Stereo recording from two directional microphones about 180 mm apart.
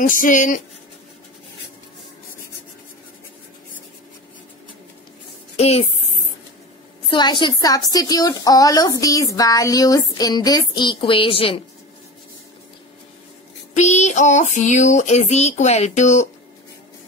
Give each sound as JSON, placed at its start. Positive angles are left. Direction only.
{"t": 0.0, "sound": "speech", "side_deg": 45}
{"t": 5.6, "sound": "speech", "side_deg": 35}
{"t": 7.1, "sound": "a woman's voice", "side_deg": 25}
{"t": 13.7, "sound": "a sound", "side_deg": 40}